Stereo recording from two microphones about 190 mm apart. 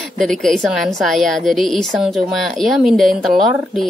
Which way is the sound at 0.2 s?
Centre (ahead or behind).